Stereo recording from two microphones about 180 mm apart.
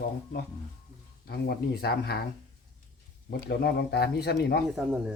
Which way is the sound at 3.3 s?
60° left (ahead or behind).